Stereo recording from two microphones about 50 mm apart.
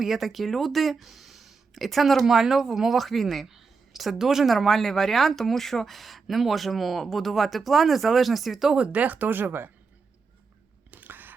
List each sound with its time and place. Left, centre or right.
0.0 s speech: centre
8.7 s speech: right
10.9 s a sound: right